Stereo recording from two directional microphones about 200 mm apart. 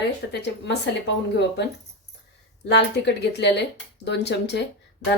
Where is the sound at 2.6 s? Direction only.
60° left (ahead or behind).